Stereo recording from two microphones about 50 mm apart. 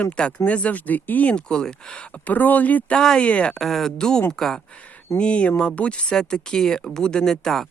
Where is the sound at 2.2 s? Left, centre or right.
Left.